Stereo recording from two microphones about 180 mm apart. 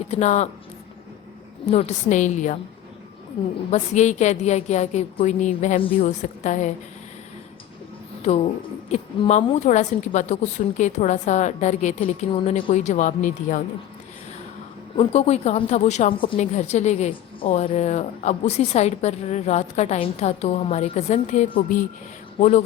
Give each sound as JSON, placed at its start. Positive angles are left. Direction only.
{"t": 0.1, "sound": "a woman's voice", "side_deg": 40}
{"t": 1.6, "sound": "a woman's voice", "side_deg": 40}
{"t": 3.7, "sound": "a woman's voice", "side_deg": 40}
{"t": 8.9, "sound": "a woman's voice", "side_deg": 40}
{"t": 15.1, "sound": "a woman's voice", "side_deg": 35}